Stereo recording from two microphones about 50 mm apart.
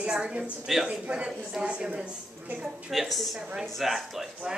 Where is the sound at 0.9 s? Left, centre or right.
Right.